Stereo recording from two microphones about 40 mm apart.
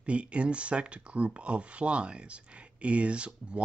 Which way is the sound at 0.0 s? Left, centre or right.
Right.